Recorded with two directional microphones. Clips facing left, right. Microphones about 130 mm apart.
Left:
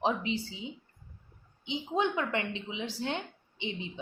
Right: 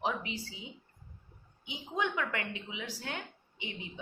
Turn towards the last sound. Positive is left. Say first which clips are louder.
# left 6 dB
turn(degrees=25)  # may be behind; listen again after turning